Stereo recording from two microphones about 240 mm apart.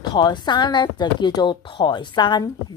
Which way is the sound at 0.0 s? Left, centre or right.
Centre.